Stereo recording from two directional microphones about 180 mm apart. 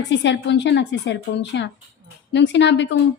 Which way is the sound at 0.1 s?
80° left.